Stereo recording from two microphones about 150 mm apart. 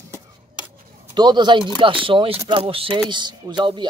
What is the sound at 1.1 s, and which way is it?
Speech, 30° right (ahead or behind).